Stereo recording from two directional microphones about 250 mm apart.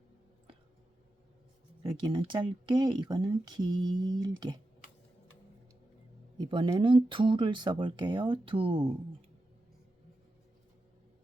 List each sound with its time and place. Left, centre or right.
1.8 s speech: centre
6.3 s speech: centre